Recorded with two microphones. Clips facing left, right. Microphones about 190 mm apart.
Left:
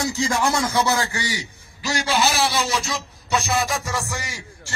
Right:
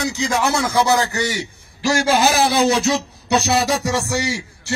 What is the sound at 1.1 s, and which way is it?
Speech, 20° right (ahead or behind).